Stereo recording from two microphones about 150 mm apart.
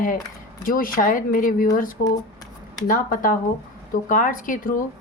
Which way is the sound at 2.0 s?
25° left (ahead or behind).